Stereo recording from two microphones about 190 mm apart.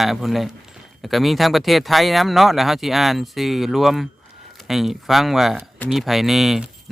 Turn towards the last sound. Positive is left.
turn(degrees=0)  # may be behind; listen again after turning